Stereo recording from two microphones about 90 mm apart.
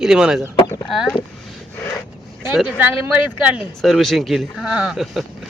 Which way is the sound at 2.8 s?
20° right (ahead or behind).